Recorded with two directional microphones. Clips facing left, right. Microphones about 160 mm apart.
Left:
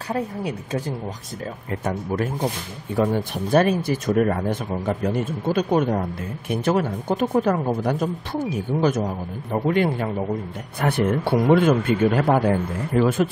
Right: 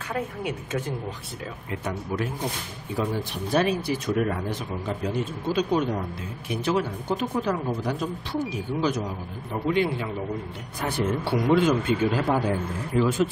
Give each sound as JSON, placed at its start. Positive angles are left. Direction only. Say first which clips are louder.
{"t": 0.1, "sound": "a woman's voice", "louder": "left 4 dB", "side_deg": 35}
{"t": 3.0, "sound": "speech", "louder": "left 6 dB", "side_deg": 50}
{"t": 10.8, "sound": "speech", "louder": "left 5 dB", "side_deg": 60}